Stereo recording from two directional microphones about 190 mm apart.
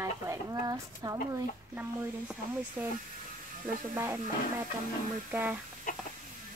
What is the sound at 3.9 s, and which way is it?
Speech, 15° right (ahead or behind).